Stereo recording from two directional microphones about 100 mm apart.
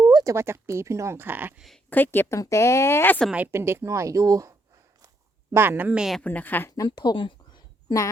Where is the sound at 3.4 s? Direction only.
25° right (ahead or behind).